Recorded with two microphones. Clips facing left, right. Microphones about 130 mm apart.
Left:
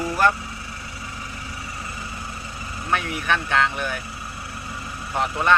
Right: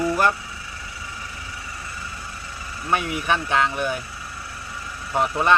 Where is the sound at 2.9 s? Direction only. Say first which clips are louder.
Right 1 dB; 15° right (ahead or behind).